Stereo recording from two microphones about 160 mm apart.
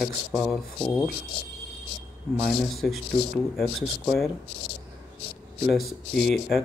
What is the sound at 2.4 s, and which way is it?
Speech, centre (ahead or behind).